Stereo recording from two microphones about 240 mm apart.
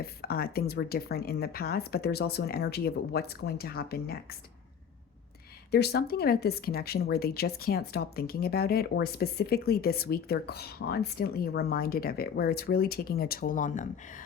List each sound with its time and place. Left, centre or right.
0.0 s speech: left
5.7 s speech: left